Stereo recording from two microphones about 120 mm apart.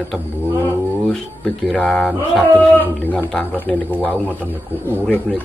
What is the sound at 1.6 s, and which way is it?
Speech, 10° left (ahead or behind).